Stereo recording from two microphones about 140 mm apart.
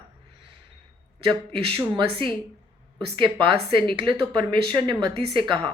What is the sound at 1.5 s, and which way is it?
A woman's voice, 40° right (ahead or behind).